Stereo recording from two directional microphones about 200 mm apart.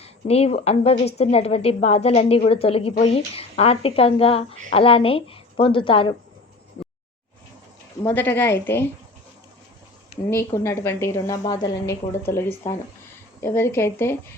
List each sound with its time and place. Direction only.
0.0 s a woman's voice: 30° left (ahead or behind)
8.0 s a woman's voice: 10° left (ahead or behind)
10.2 s a woman's voice: 15° left (ahead or behind)